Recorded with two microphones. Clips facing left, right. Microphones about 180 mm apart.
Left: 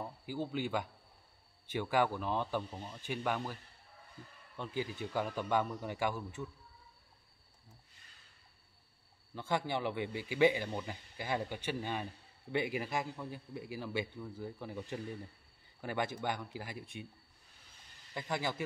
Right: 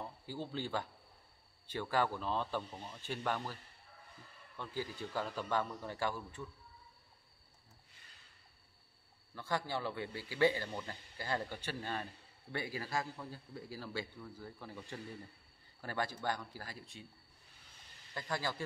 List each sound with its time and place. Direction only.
0.0 s speech: 15° left (ahead or behind)
4.6 s speech: 15° left (ahead or behind)
9.3 s a man's voice: 20° left (ahead or behind)
18.1 s a man's voice: 20° left (ahead or behind)